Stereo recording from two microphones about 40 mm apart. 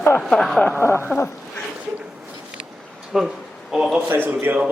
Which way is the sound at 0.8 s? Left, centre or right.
Left.